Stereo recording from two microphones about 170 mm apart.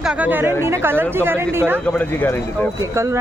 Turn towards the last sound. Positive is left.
turn(degrees=-15)  # may be behind; listen again after turning